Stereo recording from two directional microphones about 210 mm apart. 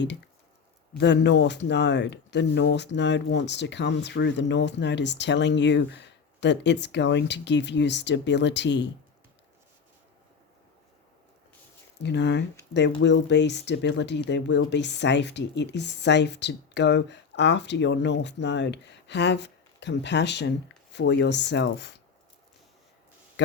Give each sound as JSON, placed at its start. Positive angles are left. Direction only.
{"t": 0.9, "sound": "speech", "side_deg": 55}
{"t": 12.0, "sound": "speech", "side_deg": 55}